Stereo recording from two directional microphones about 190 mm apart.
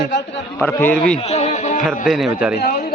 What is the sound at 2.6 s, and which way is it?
Speech, 55° left (ahead or behind).